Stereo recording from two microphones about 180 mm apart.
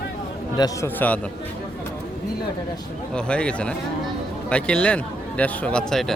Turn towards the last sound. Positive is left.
turn(degrees=5)  # may be behind; listen again after turning